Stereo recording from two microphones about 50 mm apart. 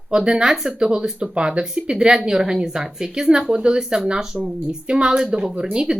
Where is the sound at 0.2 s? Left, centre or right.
Centre.